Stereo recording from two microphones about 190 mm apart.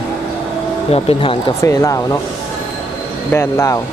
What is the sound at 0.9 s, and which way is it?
Speech, 30° left (ahead or behind).